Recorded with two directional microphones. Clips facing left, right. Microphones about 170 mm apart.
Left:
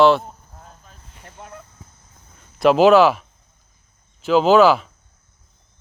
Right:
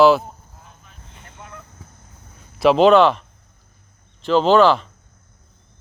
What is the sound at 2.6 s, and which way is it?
Speech, centre (ahead or behind).